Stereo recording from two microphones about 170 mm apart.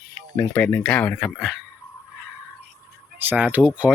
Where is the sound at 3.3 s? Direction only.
10° right (ahead or behind).